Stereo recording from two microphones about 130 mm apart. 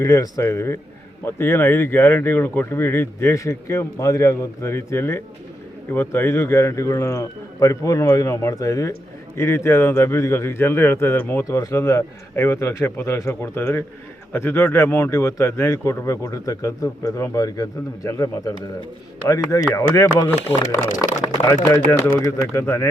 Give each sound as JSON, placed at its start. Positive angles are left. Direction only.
{"t": 0.0, "sound": "a man's voice", "side_deg": 25}
{"t": 21.0, "sound": "a man's voice", "side_deg": 25}